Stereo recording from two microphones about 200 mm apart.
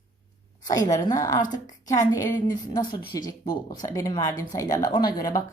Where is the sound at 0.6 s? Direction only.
20° left (ahead or behind).